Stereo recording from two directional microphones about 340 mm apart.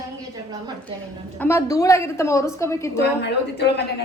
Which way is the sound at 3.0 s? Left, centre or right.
Left.